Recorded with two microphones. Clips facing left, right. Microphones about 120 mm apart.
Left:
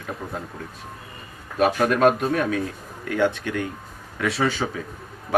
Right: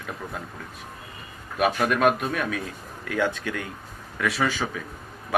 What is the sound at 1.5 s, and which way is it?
Speech, 30° left (ahead or behind).